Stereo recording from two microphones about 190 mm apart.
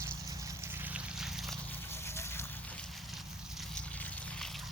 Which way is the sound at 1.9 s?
15° left (ahead or behind).